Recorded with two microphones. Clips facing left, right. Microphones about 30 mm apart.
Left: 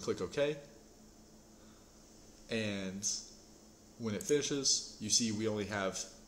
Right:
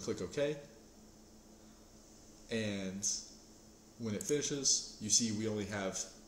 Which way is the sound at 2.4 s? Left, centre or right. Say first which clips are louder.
Left 1 dB; centre.